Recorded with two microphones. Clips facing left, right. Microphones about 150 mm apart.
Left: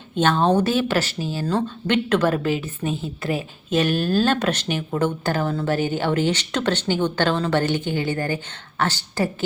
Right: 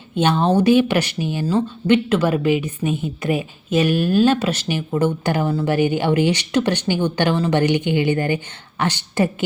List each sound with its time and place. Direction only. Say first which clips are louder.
0.2 s a woman's voice: right 1 dB; 10° right (ahead or behind)